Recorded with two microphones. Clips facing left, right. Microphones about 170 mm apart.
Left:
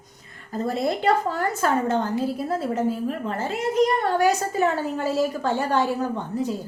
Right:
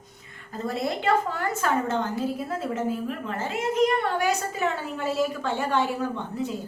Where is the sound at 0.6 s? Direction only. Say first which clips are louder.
Left 4 dB; 35° left (ahead or behind).